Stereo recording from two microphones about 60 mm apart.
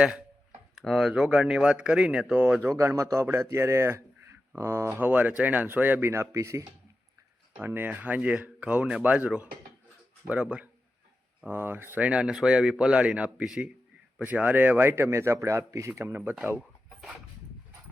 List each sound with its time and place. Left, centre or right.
0.0 s speech: centre
1.3 s speech: centre
2.7 s speech: right
4.9 s speech: right
6.1 s speech: right
7.6 s speech: right; by 10.7 s centre
11.4 s speech: right
11.9 s speech: centre
13.4 s speech: centre
14.2 s speech: right
15.9 s speech: right